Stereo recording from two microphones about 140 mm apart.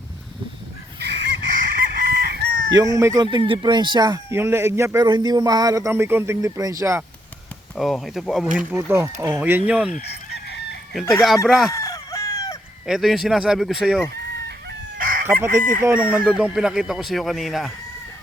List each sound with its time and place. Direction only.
1.5 s chicken: 90° right
2.7 s a man's voice: 25° right (ahead or behind)
3.3 s a man's voice: 35° right (ahead or behind)
5.0 s a man's voice: 30° right (ahead or behind)
7.8 s speech: centre (ahead or behind)
8.7 s a man's voice: 20° right (ahead or behind)
11.1 s speech: centre (ahead or behind)
11.7 s chicken: 25° left (ahead or behind)
12.8 s speech: centre (ahead or behind)
14.9 s fowl: 75° right (ahead or behind)
15.8 s speech: 15° right (ahead or behind)